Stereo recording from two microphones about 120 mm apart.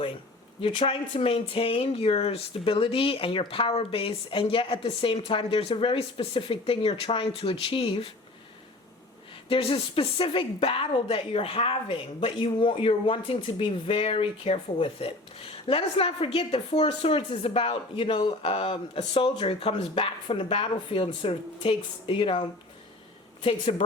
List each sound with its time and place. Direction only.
0.6 s speech: 50° left (ahead or behind)
9.5 s speech: 50° left (ahead or behind)